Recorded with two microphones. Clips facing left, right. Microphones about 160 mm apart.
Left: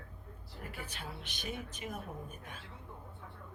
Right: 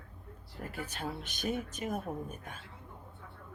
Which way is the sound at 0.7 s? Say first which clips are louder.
Right 7 dB; 45° right (ahead or behind).